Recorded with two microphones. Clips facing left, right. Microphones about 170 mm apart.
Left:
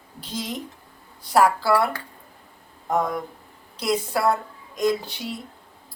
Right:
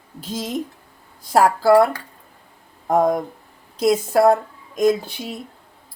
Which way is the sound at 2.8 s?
50° right (ahead or behind).